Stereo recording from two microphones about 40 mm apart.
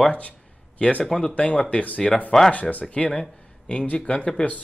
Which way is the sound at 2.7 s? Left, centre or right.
Left.